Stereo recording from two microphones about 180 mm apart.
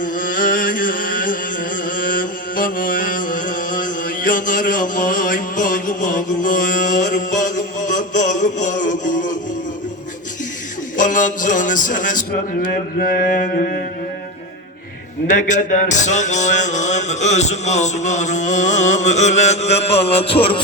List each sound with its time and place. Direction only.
0.0 s a sound: 50° left (ahead or behind)
10.9 s a man's voice: 45° left (ahead or behind)
15.3 s speech: 45° left (ahead or behind)